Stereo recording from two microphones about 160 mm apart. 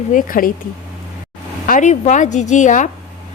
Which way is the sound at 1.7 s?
50° left (ahead or behind).